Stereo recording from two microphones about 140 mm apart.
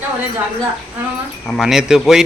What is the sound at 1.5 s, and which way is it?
Speech, centre (ahead or behind).